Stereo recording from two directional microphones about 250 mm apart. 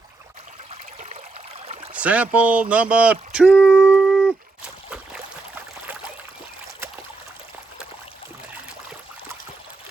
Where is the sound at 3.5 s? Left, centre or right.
Centre.